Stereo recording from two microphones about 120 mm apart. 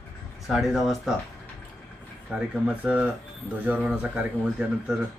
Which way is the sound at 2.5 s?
10° right (ahead or behind).